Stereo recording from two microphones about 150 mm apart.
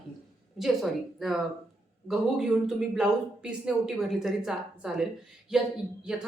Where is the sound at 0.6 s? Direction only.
Centre (ahead or behind).